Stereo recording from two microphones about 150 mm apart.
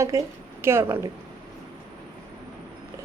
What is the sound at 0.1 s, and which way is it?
Speech, 20° right (ahead or behind).